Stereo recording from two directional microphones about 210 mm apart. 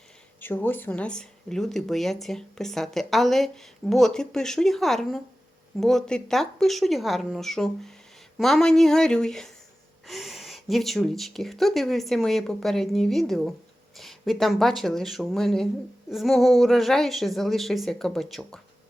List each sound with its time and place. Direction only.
0.3 s speech: 10° left (ahead or behind)